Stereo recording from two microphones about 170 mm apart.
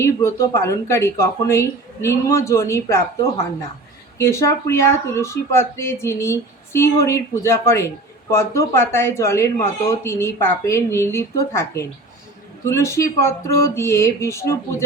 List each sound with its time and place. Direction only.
0.0 s speech: 15° left (ahead or behind)